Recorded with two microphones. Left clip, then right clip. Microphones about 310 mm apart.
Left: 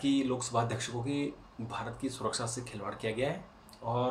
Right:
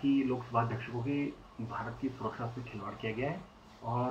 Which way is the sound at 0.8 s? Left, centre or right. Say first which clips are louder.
Left 1 dB; centre.